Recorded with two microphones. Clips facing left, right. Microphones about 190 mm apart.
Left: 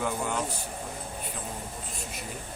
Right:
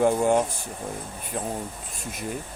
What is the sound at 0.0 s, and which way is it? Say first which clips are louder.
Speech: right 10 dB; 45° right (ahead or behind).